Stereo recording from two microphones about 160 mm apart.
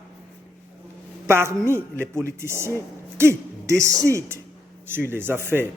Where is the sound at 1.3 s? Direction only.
15° right (ahead or behind).